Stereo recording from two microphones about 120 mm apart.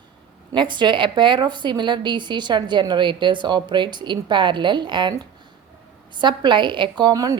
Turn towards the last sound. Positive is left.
turn(degrees=-30)  # may be behind; listen again after turning